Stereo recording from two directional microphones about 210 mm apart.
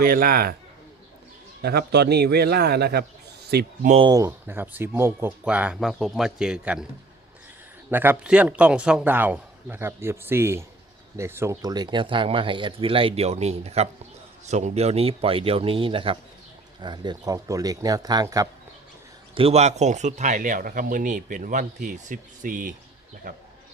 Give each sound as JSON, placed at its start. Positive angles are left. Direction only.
{"t": 0.0, "sound": "a man's voice", "side_deg": -45}
{"t": 1.6, "sound": "a man's voice", "side_deg": -50}
{"t": 3.9, "sound": "speech", "side_deg": -20}
{"t": 7.9, "sound": "a man's voice", "side_deg": -10}